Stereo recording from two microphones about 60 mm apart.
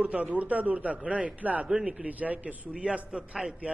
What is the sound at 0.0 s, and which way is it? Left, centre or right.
A man's voice, right.